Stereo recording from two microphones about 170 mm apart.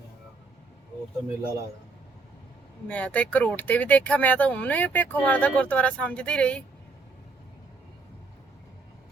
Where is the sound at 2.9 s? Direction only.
5° left (ahead or behind).